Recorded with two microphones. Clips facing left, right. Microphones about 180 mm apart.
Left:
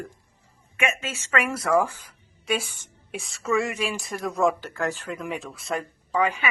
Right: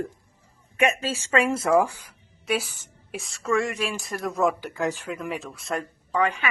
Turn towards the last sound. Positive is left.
turn(degrees=5)  # may be behind; listen again after turning